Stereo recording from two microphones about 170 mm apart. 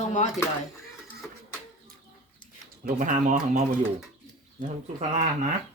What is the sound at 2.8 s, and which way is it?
Speech, 50° right (ahead or behind).